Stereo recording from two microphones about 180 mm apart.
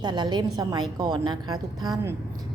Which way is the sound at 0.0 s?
25° right (ahead or behind).